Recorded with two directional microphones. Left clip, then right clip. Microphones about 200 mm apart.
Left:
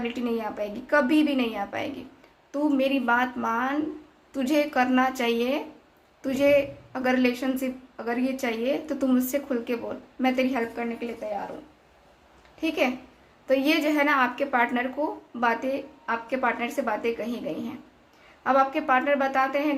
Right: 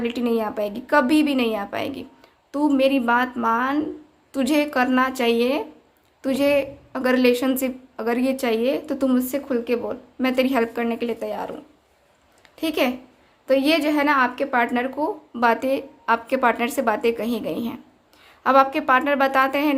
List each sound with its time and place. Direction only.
0.0 s a woman's voice: 35° right (ahead or behind); by 11.4 s 50° right (ahead or behind)
12.5 s speech: 45° right (ahead or behind)
13.5 s a woman's voice: 30° right (ahead or behind)